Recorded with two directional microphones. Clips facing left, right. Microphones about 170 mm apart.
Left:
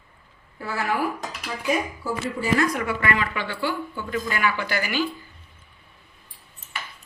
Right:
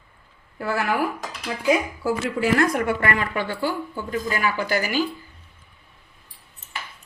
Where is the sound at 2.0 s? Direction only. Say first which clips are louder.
Right 5 dB; 75° right (ahead or behind).